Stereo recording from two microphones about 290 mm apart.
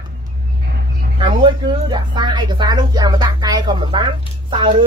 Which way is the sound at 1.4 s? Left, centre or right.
Centre.